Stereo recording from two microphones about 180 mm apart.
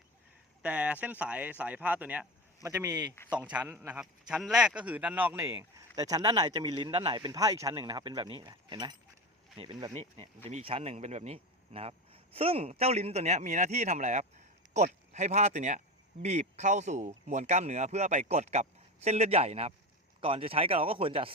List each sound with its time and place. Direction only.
0.6 s speech: 5° right (ahead or behind)
3.5 s speech: 10° right (ahead or behind); by 9.9 s 25° right (ahead or behind)
9.9 s speech: 35° right (ahead or behind)